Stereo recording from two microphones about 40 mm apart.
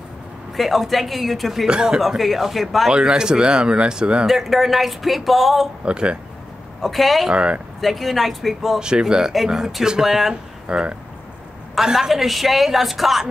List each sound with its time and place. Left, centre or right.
0.6 s speech: centre
1.7 s speech: right
2.0 s speech: centre
2.9 s speech: centre
4.3 s speech: centre
5.9 s speech: right
6.8 s speech: centre
7.2 s speech: right
7.8 s speech: centre
8.7 s speech: centre
9.3 s speech: centre
10.7 s a woman's voice: right
12.1 s speech: centre